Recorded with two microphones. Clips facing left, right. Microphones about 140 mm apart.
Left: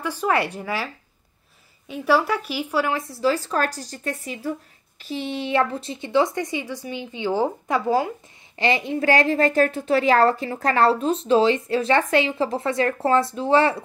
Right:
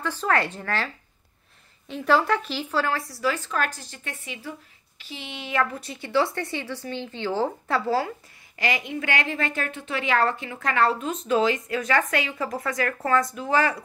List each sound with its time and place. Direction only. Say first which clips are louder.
0.0 s a woman's voice: left 2 dB; 10° left (ahead or behind)
8.5 s a woman's voice: left 5 dB; 30° left (ahead or behind)